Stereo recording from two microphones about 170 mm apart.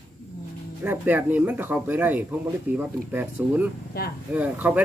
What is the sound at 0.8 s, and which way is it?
Speech, 10° right (ahead or behind).